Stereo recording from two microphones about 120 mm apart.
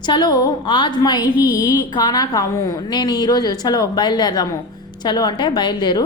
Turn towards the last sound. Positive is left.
turn(degrees=40)  # may be behind; listen again after turning